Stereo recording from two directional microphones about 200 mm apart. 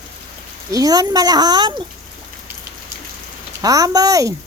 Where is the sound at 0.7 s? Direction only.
20° right (ahead or behind).